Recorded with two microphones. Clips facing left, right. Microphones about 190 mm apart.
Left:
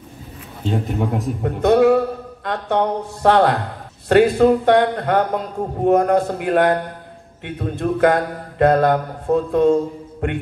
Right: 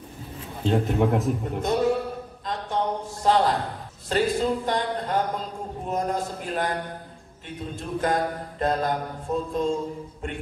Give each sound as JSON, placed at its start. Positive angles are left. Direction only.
{"t": 0.7, "sound": "a man's voice", "side_deg": 0}
{"t": 1.4, "sound": "a man's voice", "side_deg": 65}